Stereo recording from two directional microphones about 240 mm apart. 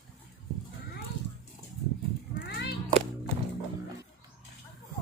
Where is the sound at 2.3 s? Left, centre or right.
Left.